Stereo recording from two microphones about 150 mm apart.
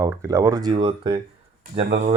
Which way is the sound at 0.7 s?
35° right (ahead or behind).